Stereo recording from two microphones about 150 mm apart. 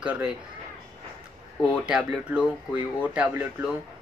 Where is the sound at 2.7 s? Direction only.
10° right (ahead or behind).